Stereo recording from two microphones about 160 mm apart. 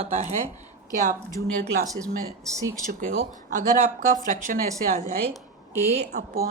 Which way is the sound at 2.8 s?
60° right (ahead or behind).